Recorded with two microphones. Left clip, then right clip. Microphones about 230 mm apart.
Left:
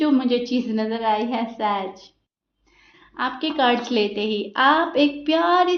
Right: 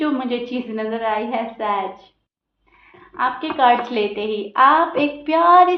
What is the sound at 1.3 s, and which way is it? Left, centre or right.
Speech, left.